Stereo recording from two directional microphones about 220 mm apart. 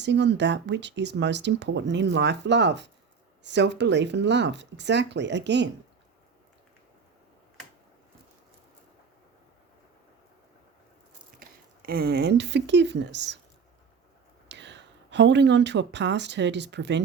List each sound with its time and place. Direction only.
0.0 s speech: 50° right (ahead or behind)
11.3 s speech: 40° right (ahead or behind)
14.4 s speech: 55° right (ahead or behind)